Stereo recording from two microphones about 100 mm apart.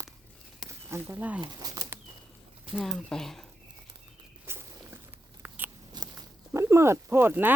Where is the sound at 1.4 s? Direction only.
40° right (ahead or behind).